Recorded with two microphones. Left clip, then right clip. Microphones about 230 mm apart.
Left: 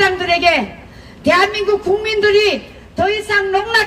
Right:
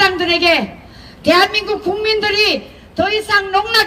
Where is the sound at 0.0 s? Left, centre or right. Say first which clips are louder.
Even; right.